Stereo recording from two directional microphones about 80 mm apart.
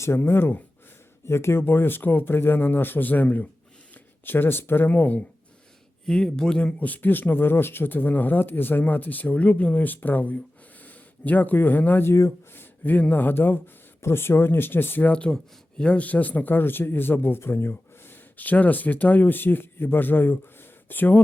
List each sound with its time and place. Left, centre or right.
0.0 s speech: left
6.1 s speech: centre
6.7 s speech: left
15.1 s speech: centre